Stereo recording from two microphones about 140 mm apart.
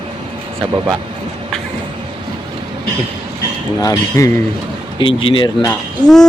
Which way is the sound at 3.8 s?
25° left (ahead or behind).